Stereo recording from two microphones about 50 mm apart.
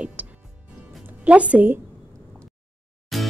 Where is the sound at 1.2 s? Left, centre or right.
Right.